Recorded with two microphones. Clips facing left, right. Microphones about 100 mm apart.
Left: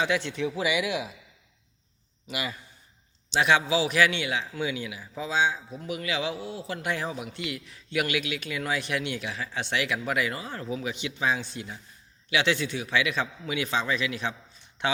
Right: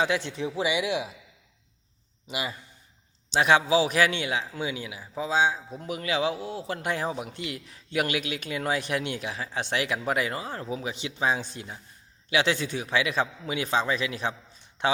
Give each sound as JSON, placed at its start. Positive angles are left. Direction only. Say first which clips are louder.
{"t": 0.0, "sound": "speech", "louder": "even", "side_deg": -30}
{"t": 2.2, "sound": "speech", "louder": "right 1 dB", "side_deg": -20}
{"t": 3.3, "sound": "a man's voice", "louder": "right 2 dB", "side_deg": -35}
{"t": 11.3, "sound": "a man's voice", "louder": "even", "side_deg": -40}